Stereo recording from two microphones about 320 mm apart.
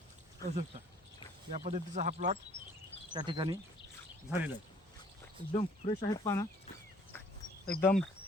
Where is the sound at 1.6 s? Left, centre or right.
Right.